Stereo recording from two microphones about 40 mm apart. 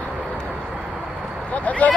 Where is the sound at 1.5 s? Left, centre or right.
Left.